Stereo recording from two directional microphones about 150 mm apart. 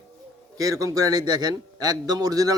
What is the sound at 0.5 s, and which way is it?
A man's voice, 20° right (ahead or behind).